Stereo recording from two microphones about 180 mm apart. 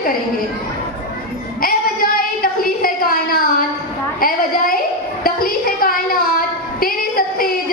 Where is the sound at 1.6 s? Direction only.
55° left (ahead or behind).